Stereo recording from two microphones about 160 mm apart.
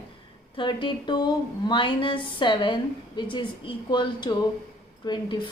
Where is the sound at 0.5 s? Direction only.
30° left (ahead or behind).